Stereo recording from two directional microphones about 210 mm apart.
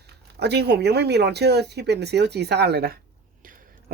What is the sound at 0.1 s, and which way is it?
Speech, 50° right (ahead or behind).